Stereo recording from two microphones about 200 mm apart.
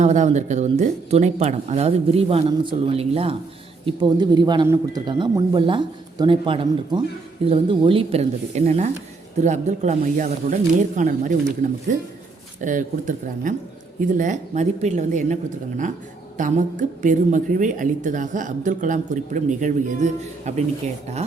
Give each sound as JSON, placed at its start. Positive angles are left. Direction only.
{"t": 0.0, "sound": "a man's voice", "side_deg": -35}
{"t": 12.6, "sound": "speech", "side_deg": -40}
{"t": 16.4, "sound": "speech", "side_deg": -40}